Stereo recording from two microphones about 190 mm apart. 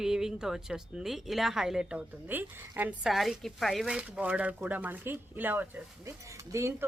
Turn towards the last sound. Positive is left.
turn(degrees=-15)  # may be behind; listen again after turning